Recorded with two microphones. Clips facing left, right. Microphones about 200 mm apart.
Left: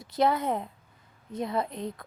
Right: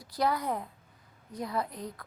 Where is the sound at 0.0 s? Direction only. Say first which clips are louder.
Left 4 dB; 25° left (ahead or behind).